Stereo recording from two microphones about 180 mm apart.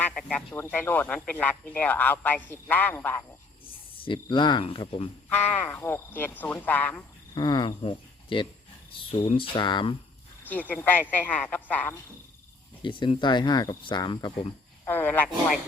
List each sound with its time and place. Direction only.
0.0 s speech: 5° left (ahead or behind)
3.9 s speech: 30° left (ahead or behind)
5.3 s speech: 10° left (ahead or behind)
7.3 s speech: 25° left (ahead or behind)
10.5 s speech: 10° left (ahead or behind)
12.8 s speech: 25° left (ahead or behind)
14.8 s speech: 10° left (ahead or behind)